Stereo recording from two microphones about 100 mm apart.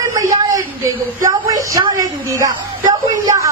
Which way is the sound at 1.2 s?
35° right (ahead or behind).